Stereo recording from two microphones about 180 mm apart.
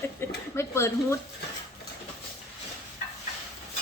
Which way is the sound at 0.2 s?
15° left (ahead or behind).